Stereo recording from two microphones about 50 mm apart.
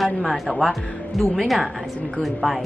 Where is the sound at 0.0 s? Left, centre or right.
Centre.